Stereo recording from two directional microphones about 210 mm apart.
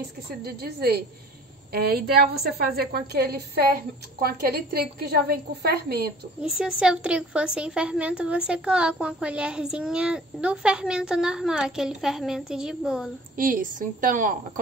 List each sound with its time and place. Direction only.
0.4 s a woman's voice: 50° right (ahead or behind)
6.5 s a woman's voice: 5° right (ahead or behind)
13.4 s a woman's voice: 40° right (ahead or behind)